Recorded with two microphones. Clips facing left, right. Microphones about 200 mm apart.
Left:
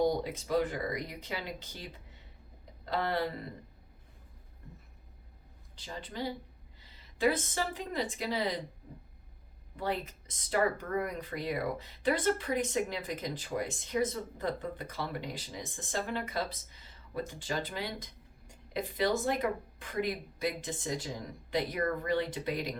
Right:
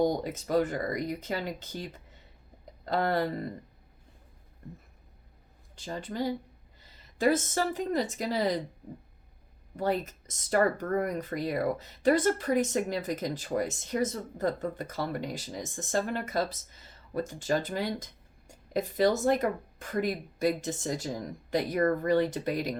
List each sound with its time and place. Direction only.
0.0 s speech: 45° right (ahead or behind)
5.7 s speech: 45° right (ahead or behind)
9.7 s speech: 45° right (ahead or behind)